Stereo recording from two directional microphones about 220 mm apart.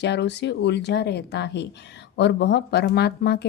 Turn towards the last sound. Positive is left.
turn(degrees=45)  # may be behind; listen again after turning